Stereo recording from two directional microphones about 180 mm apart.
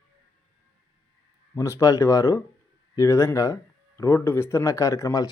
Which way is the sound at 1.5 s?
15° left (ahead or behind).